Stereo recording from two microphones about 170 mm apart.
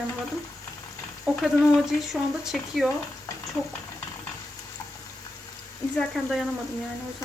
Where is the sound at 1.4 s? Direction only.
Centre (ahead or behind).